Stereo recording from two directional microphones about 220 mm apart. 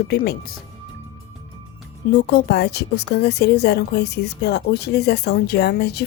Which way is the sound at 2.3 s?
50° left (ahead or behind).